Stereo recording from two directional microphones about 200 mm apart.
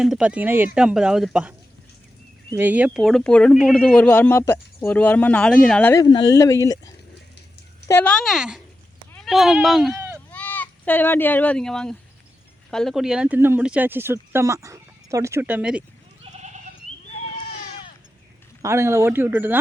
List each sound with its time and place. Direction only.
0.0 s speech: 5° right (ahead or behind)
2.6 s speech: 10° right (ahead or behind)
5.9 s speech: 20° left (ahead or behind); by 15.8 s 5° right (ahead or behind)
16.2 s goat: 35° right (ahead or behind)
18.6 s speech: 15° right (ahead or behind)